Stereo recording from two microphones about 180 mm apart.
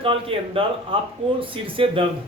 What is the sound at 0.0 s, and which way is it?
A man's voice, 30° right (ahead or behind).